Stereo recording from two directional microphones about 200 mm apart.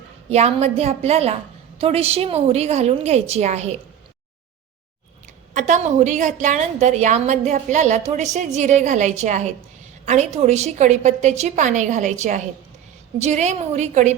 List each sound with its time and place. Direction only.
0.3 s a woman's voice: 30° right (ahead or behind)
5.5 s a woman's voice: 35° right (ahead or behind)